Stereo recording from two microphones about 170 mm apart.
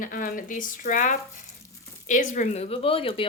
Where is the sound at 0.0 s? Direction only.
55° left (ahead or behind).